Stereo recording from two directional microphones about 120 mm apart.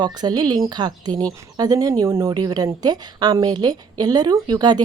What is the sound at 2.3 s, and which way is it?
Speech, 35° right (ahead or behind).